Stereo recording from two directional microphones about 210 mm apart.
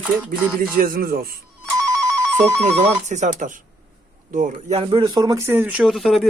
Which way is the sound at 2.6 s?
35° right (ahead or behind).